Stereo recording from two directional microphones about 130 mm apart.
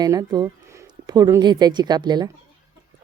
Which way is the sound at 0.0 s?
30° right (ahead or behind).